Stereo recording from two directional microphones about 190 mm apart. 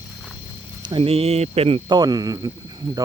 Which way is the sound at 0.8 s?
25° right (ahead or behind).